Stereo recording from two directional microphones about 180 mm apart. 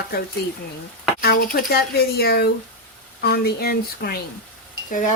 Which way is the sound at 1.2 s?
55° left (ahead or behind).